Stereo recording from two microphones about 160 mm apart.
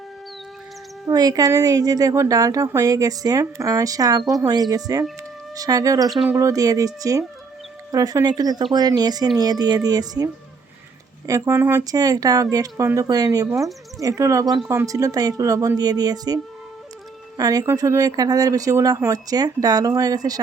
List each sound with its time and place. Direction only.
1.0 s a woman's voice: 25° right (ahead or behind)
6.1 s speech: centre (ahead or behind)
6.3 s a woman's voice: 20° right (ahead or behind)
11.3 s a woman's voice: 20° right (ahead or behind)